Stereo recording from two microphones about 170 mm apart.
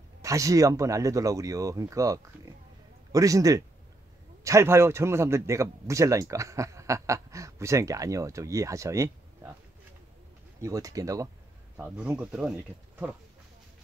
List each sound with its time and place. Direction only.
0.2 s a man's voice: 20° right (ahead or behind)
10.6 s a man's voice: 20° right (ahead or behind)